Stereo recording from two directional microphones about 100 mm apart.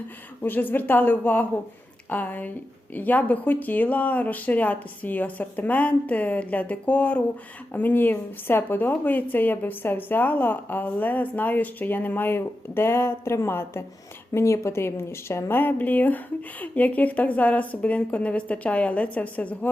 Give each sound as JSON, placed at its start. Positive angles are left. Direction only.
{"t": 0.4, "sound": "a woman's voice", "side_deg": 20}